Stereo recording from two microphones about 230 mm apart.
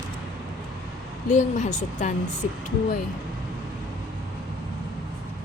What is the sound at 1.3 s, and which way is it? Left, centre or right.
Speech, left.